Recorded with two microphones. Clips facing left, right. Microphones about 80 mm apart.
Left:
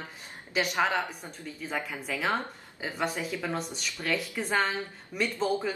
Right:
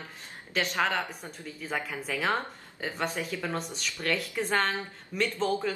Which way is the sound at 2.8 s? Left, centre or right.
Centre.